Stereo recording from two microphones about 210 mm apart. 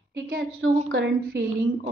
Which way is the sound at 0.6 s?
70° right (ahead or behind).